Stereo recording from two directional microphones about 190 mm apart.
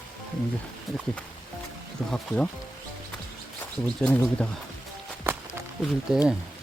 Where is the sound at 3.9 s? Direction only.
5° left (ahead or behind).